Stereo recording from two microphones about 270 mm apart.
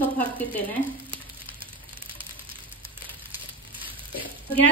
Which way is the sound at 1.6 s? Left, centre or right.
Centre.